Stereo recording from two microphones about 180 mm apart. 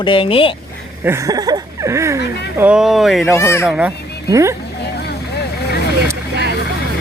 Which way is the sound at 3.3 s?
15° left (ahead or behind).